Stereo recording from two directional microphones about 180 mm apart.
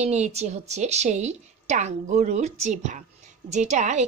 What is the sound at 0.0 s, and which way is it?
A woman's voice, 40° right (ahead or behind).